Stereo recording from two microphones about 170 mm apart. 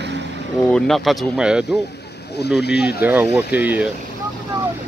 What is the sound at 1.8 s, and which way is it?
Speech, 80° left.